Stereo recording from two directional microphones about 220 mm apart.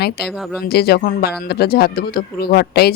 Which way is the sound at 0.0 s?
45° left (ahead or behind).